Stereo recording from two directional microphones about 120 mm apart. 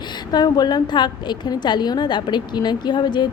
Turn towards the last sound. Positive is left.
turn(degrees=40)  # may be behind; listen again after turning